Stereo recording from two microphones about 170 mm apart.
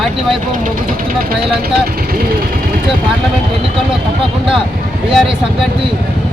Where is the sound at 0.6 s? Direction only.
55° right (ahead or behind).